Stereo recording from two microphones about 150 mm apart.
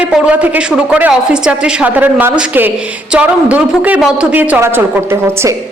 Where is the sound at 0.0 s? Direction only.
10° right (ahead or behind).